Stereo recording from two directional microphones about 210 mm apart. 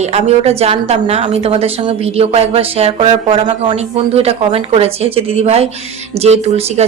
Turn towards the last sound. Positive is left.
turn(degrees=-30)  # may be behind; listen again after turning